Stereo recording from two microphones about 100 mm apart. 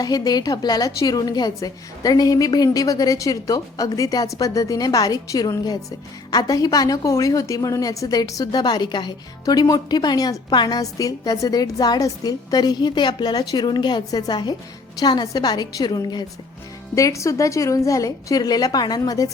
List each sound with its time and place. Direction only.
0.0 s a woman's voice: 40° left (ahead or behind)
16.9 s a woman's voice: 30° left (ahead or behind)